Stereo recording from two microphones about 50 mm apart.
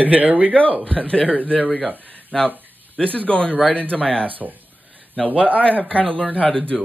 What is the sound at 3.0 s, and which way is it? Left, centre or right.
Speech, left.